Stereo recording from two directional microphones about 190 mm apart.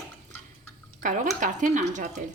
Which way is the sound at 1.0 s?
40° right (ahead or behind).